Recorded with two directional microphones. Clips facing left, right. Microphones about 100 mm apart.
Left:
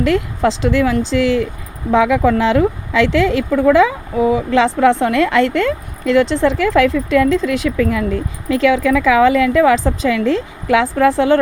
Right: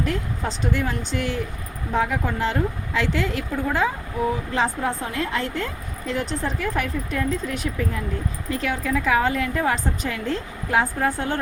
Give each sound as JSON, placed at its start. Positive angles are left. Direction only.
{"t": 0.0, "sound": "speech", "side_deg": 90}